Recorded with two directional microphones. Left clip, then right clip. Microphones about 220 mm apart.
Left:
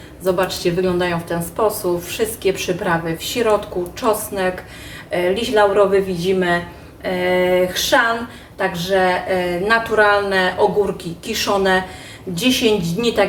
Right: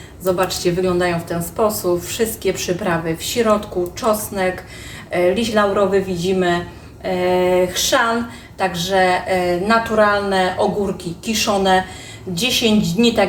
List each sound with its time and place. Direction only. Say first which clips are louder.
0.3 s speech: even; 5° right (ahead or behind)
5.1 s speech: even; centre (ahead or behind)